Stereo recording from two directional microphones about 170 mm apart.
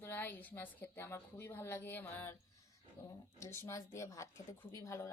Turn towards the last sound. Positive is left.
turn(degrees=15)  # may be behind; listen again after turning